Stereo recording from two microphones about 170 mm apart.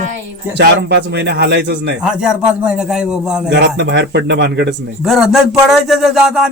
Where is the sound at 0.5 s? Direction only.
90° right.